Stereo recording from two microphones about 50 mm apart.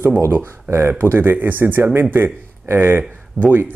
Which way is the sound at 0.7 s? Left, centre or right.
Right.